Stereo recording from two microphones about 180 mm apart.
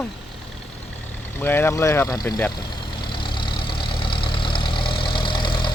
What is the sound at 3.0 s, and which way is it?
Vehicle, 25° left (ahead or behind).